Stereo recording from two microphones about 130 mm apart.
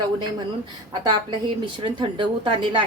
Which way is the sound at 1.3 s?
40° right (ahead or behind).